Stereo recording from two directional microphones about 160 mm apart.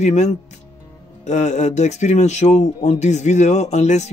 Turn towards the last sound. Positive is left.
turn(degrees=45)  # may be behind; listen again after turning